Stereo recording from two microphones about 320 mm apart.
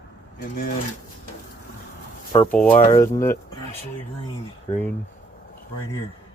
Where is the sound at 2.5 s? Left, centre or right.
Centre.